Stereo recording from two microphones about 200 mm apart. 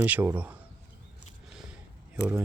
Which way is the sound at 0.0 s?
10° right (ahead or behind).